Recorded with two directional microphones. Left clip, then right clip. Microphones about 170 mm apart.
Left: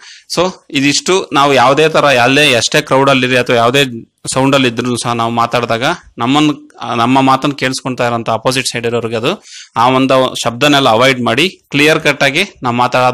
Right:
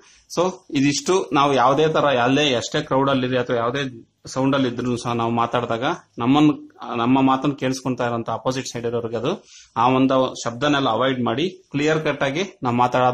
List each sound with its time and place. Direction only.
0.3 s speech: 10° left (ahead or behind)
6.2 s speech: 5° left (ahead or behind)
6.8 s speech: 20° left (ahead or behind)